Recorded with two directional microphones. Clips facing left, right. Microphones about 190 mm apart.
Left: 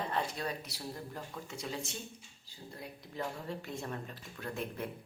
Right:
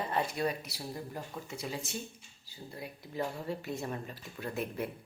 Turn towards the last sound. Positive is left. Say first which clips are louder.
# right 3 dB
turn(degrees=-5)  # may be behind; listen again after turning